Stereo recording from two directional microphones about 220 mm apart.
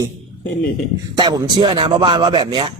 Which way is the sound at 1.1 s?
20° right (ahead or behind).